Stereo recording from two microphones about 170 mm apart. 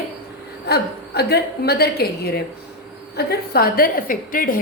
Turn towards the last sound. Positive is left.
turn(degrees=55)  # may be behind; listen again after turning